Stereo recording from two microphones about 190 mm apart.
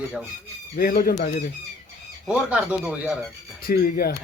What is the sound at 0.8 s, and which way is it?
Speech, 50° left (ahead or behind).